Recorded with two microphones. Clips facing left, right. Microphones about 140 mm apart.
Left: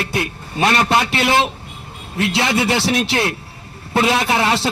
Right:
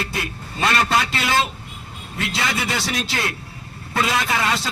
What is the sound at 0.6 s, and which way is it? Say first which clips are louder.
Speech: left 4 dB; 25° left (ahead or behind).